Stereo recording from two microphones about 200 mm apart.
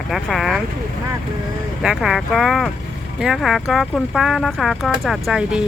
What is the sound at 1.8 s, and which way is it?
Speech, 5° right (ahead or behind).